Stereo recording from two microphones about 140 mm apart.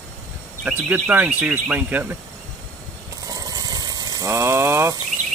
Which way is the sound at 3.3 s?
25° right (ahead or behind).